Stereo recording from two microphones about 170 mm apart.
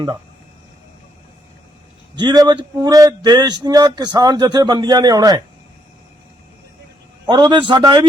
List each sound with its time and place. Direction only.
2.1 s a man's voice: 25° right (ahead or behind)
7.3 s a man's voice: 25° right (ahead or behind)